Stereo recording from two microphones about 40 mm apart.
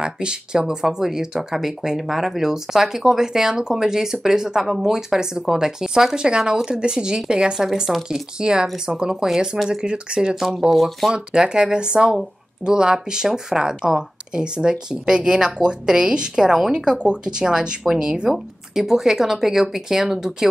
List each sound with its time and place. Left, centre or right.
0.0 s speech: right
10.7 s speech: centre
11.1 s speech: right
18.3 s speech: centre